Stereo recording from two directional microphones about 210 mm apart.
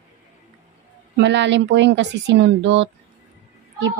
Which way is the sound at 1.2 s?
55° right (ahead or behind).